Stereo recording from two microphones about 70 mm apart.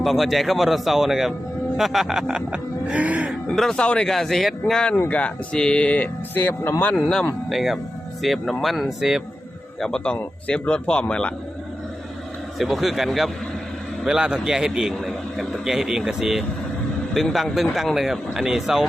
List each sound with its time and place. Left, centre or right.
0.0 s speech: centre
1.7 s music: centre
3.5 s speech: centre
3.8 s a man's voice: centre
5.0 s speech: centre
6.9 s a man's voice: centre
7.5 s speech: centre
9.8 s a man's voice: centre
12.5 s a man's voice: centre